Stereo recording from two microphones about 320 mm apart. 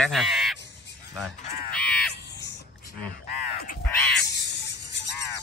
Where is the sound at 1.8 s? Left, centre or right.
Centre.